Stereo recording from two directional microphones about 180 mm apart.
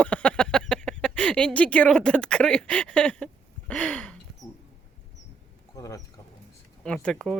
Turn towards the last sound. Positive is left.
turn(degrees=0)  # may be behind; listen again after turning